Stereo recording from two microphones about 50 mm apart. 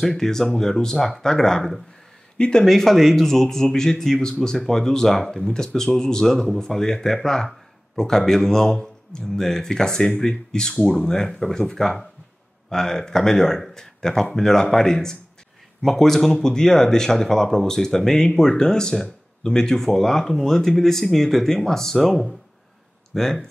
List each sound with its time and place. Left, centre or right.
0.0 s speech: centre
2.3 s speech: centre
2.6 s speech: centre